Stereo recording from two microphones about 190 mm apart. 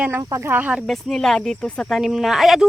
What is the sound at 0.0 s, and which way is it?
Speech, 15° right (ahead or behind).